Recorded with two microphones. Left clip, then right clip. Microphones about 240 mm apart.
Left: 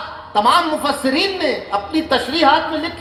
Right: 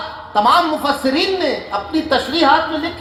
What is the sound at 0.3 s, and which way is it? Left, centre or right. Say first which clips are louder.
A man's voice: right 1 dB; left.